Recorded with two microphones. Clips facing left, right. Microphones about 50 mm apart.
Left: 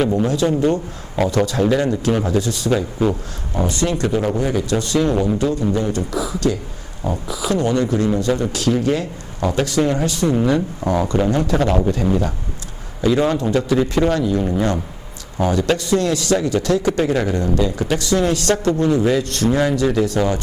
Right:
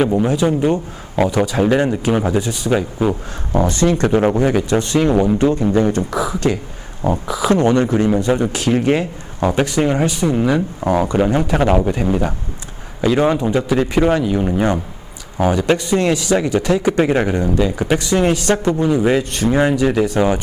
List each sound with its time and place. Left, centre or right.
0.0 s a man's voice: centre
1.7 s speech: right
3.5 s speech: right
5.1 s speech: centre
5.4 s a man's voice: right